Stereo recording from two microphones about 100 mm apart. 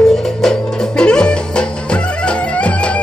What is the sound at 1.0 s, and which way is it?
Music, 10° left (ahead or behind).